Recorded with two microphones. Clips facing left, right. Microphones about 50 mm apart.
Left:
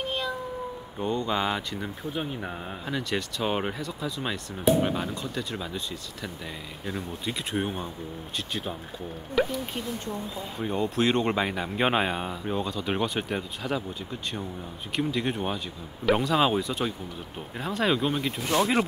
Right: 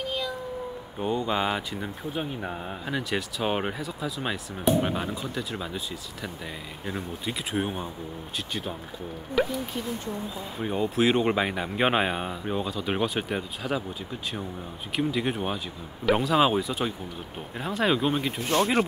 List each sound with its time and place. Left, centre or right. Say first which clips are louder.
0.9 s speech: right 1 dB; centre
9.4 s speech: even; centre
10.6 s speech: right 1 dB; centre
15.0 s speech: right 1 dB; centre
18.4 s speech: even; right